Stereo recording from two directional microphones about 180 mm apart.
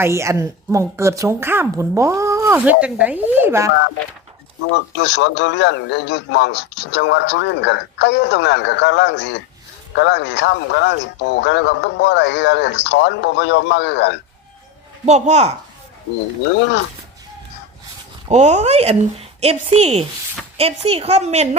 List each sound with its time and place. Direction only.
0.0 s a woman's voice: 15° right (ahead or behind)
4.7 s a man's voice: 75° left (ahead or behind)
15.0 s a woman's voice: 40° right (ahead or behind)
16.6 s a man's voice: 80° left
18.3 s a woman's voice: 40° right (ahead or behind)